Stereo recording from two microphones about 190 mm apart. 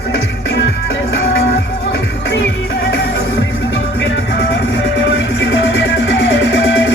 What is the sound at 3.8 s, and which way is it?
Music, 75° left (ahead or behind).